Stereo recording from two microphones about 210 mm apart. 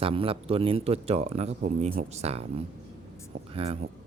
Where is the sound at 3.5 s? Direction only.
25° right (ahead or behind).